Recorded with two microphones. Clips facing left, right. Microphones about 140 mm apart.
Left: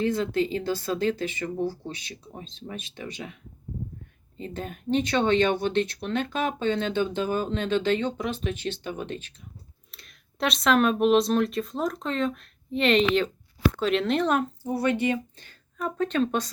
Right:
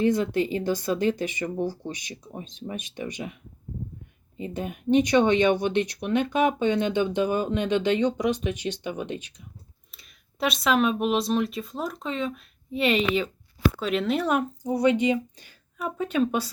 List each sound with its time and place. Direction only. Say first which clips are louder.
0.0 s speech: right 2 dB; 15° right (ahead or behind)
4.4 s speech: right 3 dB; 10° right (ahead or behind)
9.9 s speech: left 3 dB; centre (ahead or behind)